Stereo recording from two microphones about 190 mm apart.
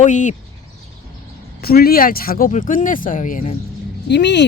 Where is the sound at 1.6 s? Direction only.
55° left (ahead or behind).